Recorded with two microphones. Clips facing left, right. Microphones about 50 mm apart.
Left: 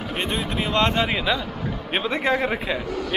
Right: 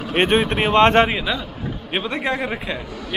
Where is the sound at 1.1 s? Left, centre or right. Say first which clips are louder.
Left 1 dB; centre.